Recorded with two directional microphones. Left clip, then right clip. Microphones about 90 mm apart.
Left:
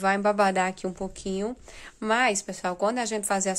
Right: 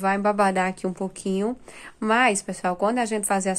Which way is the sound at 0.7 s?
5° left (ahead or behind).